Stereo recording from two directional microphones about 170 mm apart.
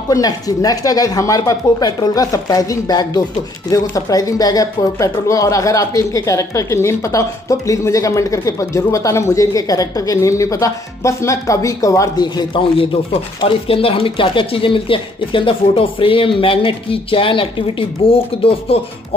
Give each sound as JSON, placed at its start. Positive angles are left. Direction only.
{"t": 0.1, "sound": "speech", "side_deg": 20}